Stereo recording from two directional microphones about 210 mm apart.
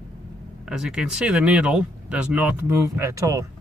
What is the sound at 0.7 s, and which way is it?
Speech, 5° right (ahead or behind).